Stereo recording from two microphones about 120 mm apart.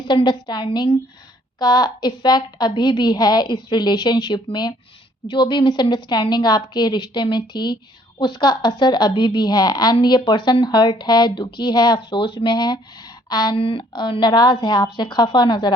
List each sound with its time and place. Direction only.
0.0 s a woman's voice: 40° left (ahead or behind)
13.6 s a woman's voice: 50° left (ahead or behind)